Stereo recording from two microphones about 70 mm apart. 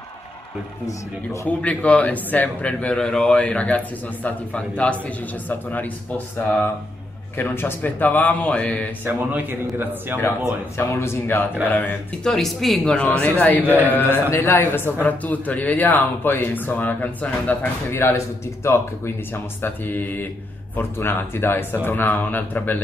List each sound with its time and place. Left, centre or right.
0.8 s speech: left
1.6 s a man's voice: centre
9.0 s speech: right
10.2 s speech: left
11.6 s a man's voice: left
12.2 s speech: centre
12.9 s speech: centre
13.2 s a man's voice: left
18.1 s speech: left
19.6 s a man's voice: left